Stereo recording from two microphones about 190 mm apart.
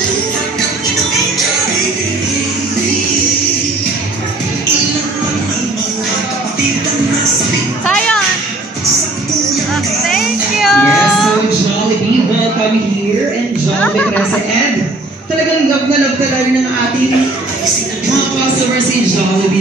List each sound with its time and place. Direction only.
10.0 s child singing: centre (ahead or behind)